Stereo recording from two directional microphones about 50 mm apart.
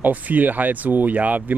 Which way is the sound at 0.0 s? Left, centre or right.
Right.